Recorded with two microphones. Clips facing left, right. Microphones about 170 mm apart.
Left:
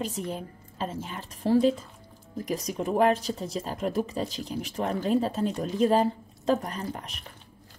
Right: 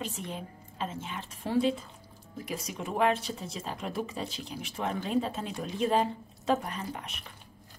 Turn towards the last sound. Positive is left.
turn(degrees=40)  # may be behind; listen again after turning